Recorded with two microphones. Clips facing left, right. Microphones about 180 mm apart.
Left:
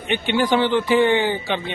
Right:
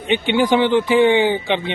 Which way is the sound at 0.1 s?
15° right (ahead or behind).